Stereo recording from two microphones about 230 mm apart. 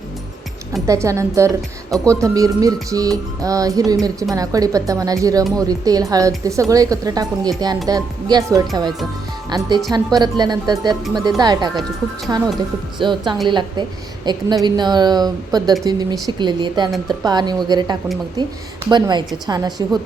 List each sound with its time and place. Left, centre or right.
0.9 s speech: centre